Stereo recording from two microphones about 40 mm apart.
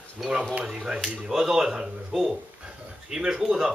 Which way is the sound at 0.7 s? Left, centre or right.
Right.